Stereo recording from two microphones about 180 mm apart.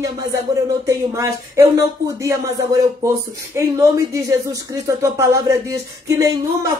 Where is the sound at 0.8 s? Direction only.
15° right (ahead or behind).